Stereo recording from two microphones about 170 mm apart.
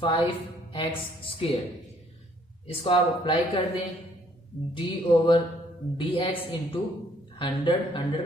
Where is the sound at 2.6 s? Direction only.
30° left (ahead or behind).